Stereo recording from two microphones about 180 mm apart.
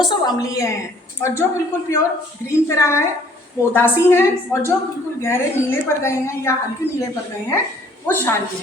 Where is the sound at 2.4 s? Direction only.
15° left (ahead or behind).